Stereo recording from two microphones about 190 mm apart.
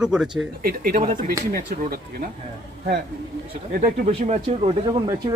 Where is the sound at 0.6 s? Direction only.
50° right (ahead or behind).